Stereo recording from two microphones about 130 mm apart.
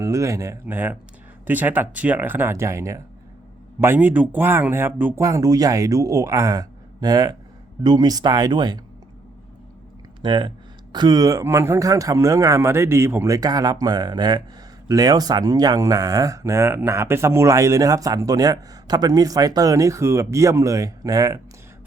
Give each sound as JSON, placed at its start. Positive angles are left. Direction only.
{"t": 0.0, "sound": "speech", "side_deg": -25}
{"t": 5.2, "sound": "speech", "side_deg": -25}
{"t": 10.2, "sound": "speech", "side_deg": -35}